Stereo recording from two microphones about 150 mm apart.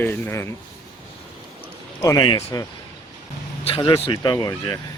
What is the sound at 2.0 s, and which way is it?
Speech, 25° left (ahead or behind).